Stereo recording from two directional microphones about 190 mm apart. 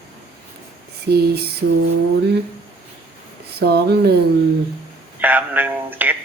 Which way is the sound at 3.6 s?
60° right (ahead or behind).